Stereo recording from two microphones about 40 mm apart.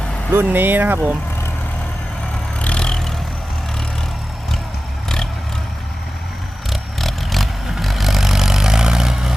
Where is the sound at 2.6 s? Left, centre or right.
Left.